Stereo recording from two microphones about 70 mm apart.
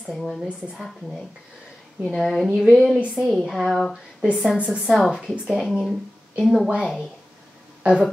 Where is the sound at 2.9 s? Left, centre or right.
Centre.